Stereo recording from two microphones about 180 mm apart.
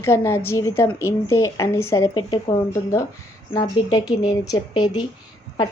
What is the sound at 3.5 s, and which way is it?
A woman's voice, 20° left (ahead or behind).